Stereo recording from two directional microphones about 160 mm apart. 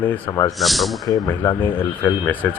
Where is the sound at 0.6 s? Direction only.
Centre (ahead or behind).